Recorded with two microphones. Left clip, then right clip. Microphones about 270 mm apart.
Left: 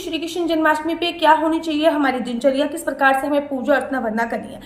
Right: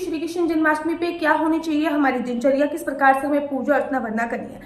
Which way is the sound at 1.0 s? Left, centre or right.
Centre.